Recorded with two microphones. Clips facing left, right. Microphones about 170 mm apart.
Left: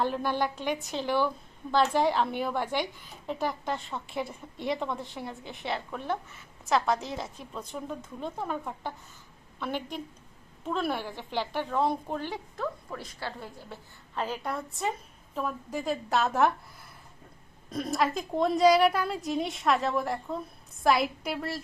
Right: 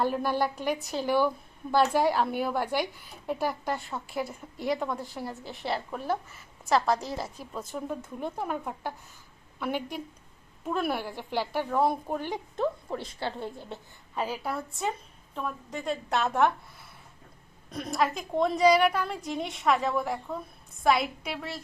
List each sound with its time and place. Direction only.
0.0 s a woman's voice: 10° right (ahead or behind)
12.9 s a woman's voice: 25° right (ahead or behind)
14.2 s a woman's voice: 10° right (ahead or behind)
17.7 s a woman's voice: centre (ahead or behind)